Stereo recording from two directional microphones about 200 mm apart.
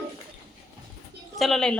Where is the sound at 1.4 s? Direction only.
Centre (ahead or behind).